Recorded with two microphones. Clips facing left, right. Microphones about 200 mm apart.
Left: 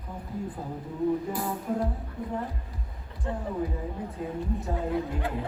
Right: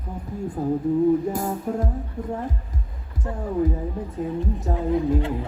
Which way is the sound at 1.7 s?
45° right (ahead or behind).